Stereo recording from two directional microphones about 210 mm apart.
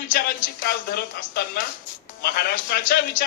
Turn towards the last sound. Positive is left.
turn(degrees=45)  # may be behind; listen again after turning